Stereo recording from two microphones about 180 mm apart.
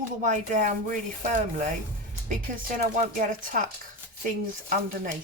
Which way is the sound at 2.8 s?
40° right (ahead or behind).